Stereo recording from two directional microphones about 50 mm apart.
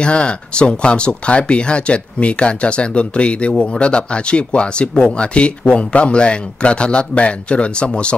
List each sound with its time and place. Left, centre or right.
0.0 s speech: left